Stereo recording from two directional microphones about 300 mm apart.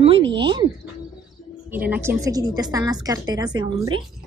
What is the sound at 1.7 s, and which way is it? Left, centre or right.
A woman's voice, centre.